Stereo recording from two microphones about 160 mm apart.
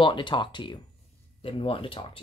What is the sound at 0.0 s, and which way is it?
Speech, 30° left (ahead or behind).